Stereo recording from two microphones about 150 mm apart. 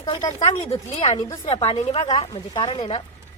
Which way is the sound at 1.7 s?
45° left (ahead or behind).